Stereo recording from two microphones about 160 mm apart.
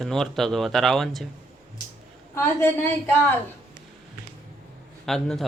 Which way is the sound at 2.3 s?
15° left (ahead or behind).